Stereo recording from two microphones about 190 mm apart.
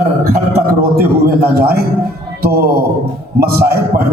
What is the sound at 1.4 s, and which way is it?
A man's voice, 55° right (ahead or behind).